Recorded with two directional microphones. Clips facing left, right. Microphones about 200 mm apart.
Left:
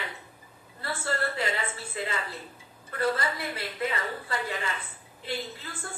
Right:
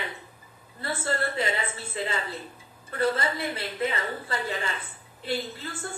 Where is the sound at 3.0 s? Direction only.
25° right (ahead or behind).